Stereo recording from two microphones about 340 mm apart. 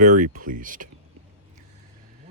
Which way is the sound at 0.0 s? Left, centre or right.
Right.